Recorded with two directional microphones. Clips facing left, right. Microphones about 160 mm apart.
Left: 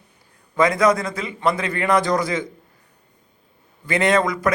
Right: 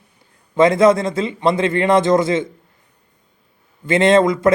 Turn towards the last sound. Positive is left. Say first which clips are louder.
# right 6 dB
turn(degrees=-25)  # may be behind; listen again after turning